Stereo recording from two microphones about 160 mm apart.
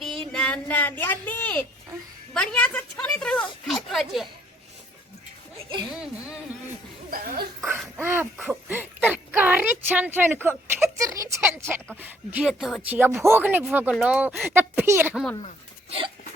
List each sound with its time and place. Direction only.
0.0 s child singing: centre (ahead or behind)
2.3 s a sound: 5° left (ahead or behind)
7.1 s speech: 65° right (ahead or behind)
8.0 s speech: 15° right (ahead or behind)
13.2 s speech: 10° right (ahead or behind)
15.1 s speech: centre (ahead or behind)